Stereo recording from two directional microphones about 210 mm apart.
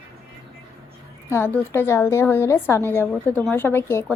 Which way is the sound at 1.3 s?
10° left (ahead or behind).